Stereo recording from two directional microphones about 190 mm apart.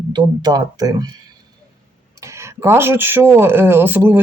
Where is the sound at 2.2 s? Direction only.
15° right (ahead or behind).